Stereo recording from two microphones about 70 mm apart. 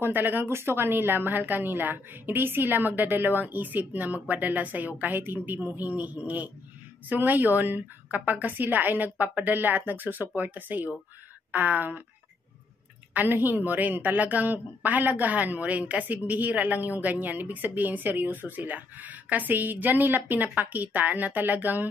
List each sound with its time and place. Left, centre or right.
0.0 s a woman's voice: right
13.1 s a woman's voice: right